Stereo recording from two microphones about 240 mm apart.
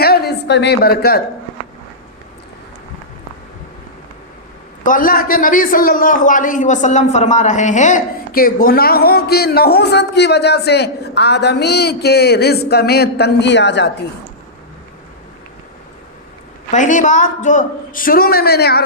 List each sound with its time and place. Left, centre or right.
0.0 s a woman's voice: left
4.8 s a man's voice: left
16.7 s a man's voice: left